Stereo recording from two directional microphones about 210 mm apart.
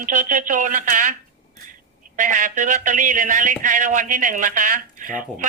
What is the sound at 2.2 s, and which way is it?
A man's voice, 40° right (ahead or behind).